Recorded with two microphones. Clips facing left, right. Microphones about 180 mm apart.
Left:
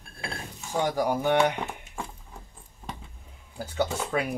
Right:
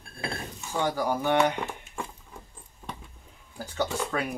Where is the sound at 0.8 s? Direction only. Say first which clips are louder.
Left 2 dB; 15° left (ahead or behind).